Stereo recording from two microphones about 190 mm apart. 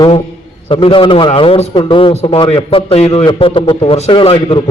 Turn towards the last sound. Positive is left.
turn(degrees=30)  # may be behind; listen again after turning